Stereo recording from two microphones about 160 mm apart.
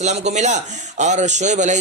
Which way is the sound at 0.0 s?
45° right (ahead or behind).